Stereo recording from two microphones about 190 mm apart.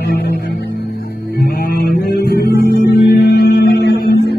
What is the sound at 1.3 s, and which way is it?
Music, 55° left (ahead or behind).